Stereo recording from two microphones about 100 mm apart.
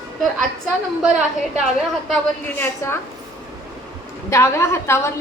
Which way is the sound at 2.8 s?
25° left (ahead or behind).